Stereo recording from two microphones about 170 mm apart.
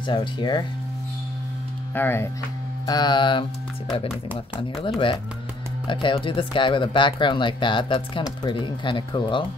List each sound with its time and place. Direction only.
0.0 s speech: 30° left (ahead or behind)
2.0 s speech: 10° left (ahead or behind)
2.9 s speech: 25° left (ahead or behind)
4.1 s speech: 5° right (ahead or behind)
4.8 s speech: 30° left (ahead or behind)